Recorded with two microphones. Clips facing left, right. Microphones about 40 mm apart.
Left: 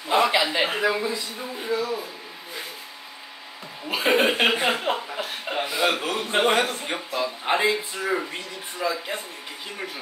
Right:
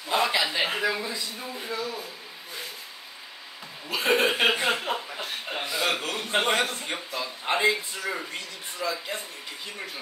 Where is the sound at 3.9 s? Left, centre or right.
Left.